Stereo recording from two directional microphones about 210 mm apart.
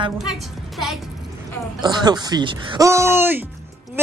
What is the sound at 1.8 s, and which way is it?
A woman's voice, 20° right (ahead or behind).